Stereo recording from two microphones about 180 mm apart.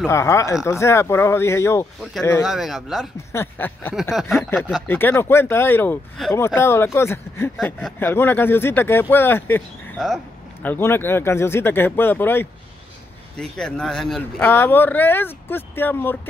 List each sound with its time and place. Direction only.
0.0 s speech: 15° left (ahead or behind)
2.4 s speech: centre (ahead or behind)
3.3 s speech: 10° left (ahead or behind)
4.1 s speech: centre (ahead or behind)
4.8 s speech: 10° left (ahead or behind)
7.5 s speech: centre (ahead or behind)
8.0 s speech: 10° left (ahead or behind)
9.9 s a sound: centre (ahead or behind)
10.7 s speech: 10° left (ahead or behind)
14.5 s speech: 10° left (ahead or behind)